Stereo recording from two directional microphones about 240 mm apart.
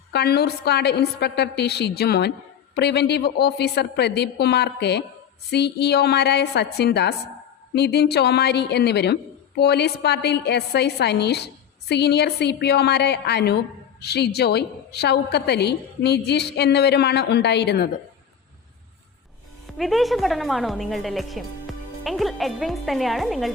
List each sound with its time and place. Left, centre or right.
0.1 s a woman's voice: left
19.6 s a woman's voice: centre